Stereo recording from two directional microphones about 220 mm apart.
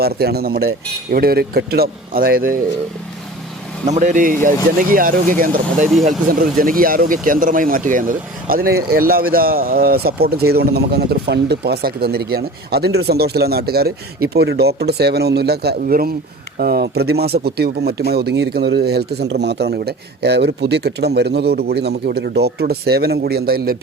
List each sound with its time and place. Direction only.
0.0 s speech: 45° right (ahead or behind)
3.8 s speech: 35° right (ahead or behind)